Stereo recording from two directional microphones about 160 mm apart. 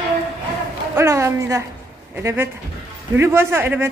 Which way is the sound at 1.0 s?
15° right (ahead or behind).